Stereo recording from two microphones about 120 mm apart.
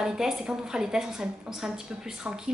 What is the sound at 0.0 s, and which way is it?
A woman's voice, 5° right (ahead or behind).